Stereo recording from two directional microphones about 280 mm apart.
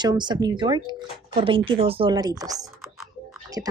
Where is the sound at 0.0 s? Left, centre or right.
Centre.